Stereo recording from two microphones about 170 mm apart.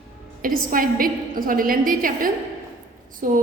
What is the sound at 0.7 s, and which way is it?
A woman's voice, 55° right (ahead or behind).